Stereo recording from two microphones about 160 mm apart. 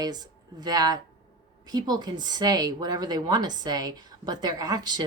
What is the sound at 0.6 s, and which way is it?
Speech, 25° right (ahead or behind).